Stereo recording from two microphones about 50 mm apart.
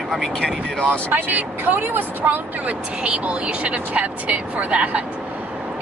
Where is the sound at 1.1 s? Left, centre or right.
Right.